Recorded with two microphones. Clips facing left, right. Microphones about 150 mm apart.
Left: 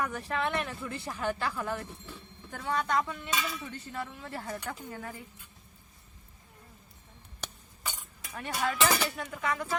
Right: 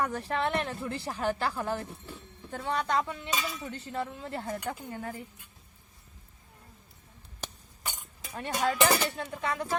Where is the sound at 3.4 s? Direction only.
30° right (ahead or behind).